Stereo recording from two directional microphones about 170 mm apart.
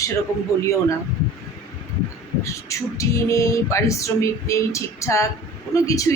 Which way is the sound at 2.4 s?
20° left (ahead or behind).